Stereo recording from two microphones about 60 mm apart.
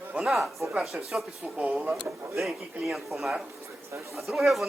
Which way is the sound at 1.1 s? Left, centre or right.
Centre.